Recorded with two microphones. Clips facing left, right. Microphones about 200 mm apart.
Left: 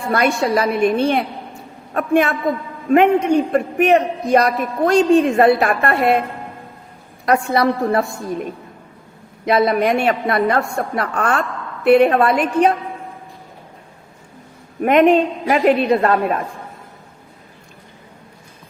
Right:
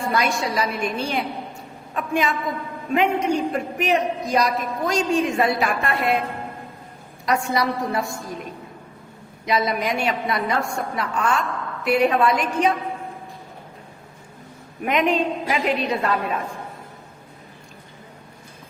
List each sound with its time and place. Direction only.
0.1 s a man's voice: 60° left (ahead or behind)
7.3 s a man's voice: 60° left (ahead or behind)
9.5 s a man's voice: 55° left (ahead or behind)
14.8 s a woman's voice: 50° left (ahead or behind)